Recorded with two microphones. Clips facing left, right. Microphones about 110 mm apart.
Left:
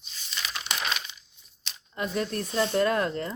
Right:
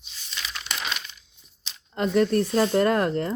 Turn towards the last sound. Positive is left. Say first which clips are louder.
# right 4 dB
turn(degrees=-50)  # may be behind; listen again after turning